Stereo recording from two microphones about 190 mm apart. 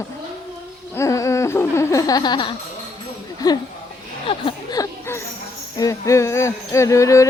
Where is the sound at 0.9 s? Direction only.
15° left (ahead or behind).